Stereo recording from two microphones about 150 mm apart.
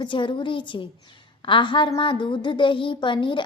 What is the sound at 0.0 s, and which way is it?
A woman's voice, 30° left (ahead or behind).